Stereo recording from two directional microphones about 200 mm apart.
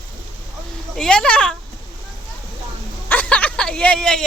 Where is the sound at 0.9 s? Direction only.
5° left (ahead or behind).